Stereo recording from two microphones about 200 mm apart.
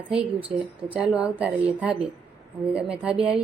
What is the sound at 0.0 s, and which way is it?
A woman's voice, 5° right (ahead or behind).